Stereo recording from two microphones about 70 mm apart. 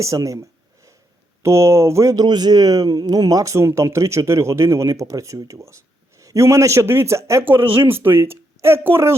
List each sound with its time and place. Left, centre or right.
0.0 s speech: right
2.1 s a man's voice: right
7.4 s speech: right